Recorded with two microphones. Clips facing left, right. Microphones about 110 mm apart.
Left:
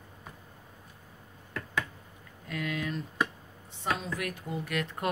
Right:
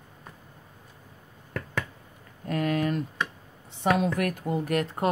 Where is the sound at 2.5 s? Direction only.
45° right (ahead or behind).